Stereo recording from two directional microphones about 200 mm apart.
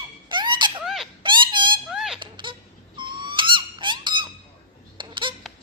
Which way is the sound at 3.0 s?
25° right (ahead or behind).